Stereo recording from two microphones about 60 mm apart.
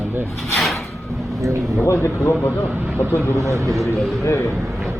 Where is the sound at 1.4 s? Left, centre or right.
Right.